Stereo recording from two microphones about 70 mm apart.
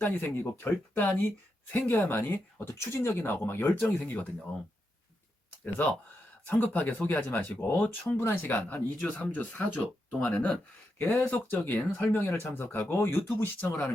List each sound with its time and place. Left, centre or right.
0.0 s speech: left
3.8 s speech: centre
5.6 s speech: left